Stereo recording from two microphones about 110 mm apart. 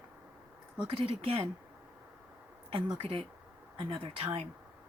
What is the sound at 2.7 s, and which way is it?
Speech, 55° right (ahead or behind).